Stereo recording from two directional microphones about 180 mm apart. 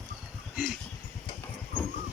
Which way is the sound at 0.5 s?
Centre (ahead or behind).